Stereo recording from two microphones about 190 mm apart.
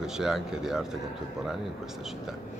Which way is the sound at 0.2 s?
Centre (ahead or behind).